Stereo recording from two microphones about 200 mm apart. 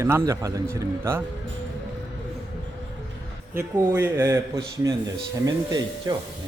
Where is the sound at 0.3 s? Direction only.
15° right (ahead or behind).